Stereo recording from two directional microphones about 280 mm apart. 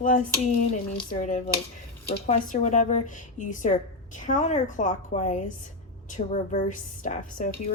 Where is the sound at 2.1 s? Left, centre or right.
Left.